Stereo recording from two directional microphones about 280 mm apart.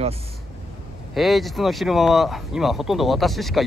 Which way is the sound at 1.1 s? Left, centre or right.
Centre.